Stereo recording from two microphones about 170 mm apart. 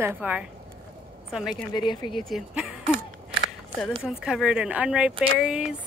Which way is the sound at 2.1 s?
Centre (ahead or behind).